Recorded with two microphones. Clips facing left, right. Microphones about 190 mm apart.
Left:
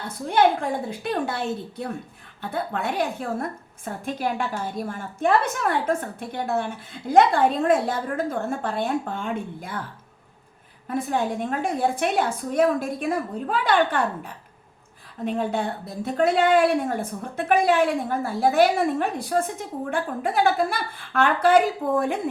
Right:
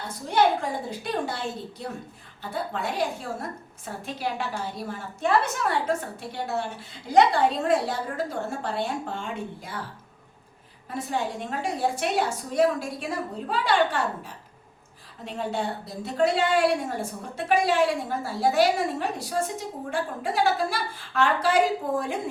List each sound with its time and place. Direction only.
0.3 s a woman's voice: 55° left (ahead or behind)
2.5 s a woman's voice: 55° left (ahead or behind)
10.8 s a woman's voice: 55° left (ahead or behind)